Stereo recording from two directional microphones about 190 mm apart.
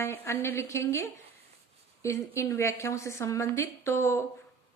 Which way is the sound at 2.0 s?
15° left (ahead or behind).